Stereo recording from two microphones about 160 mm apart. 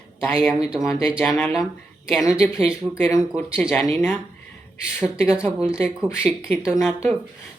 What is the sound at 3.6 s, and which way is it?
Speech, 10° left (ahead or behind).